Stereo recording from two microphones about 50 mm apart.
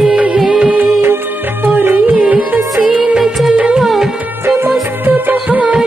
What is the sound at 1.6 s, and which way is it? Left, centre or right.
Music, right.